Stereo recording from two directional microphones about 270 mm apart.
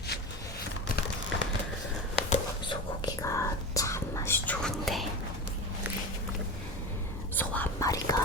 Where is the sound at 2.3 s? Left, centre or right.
Centre.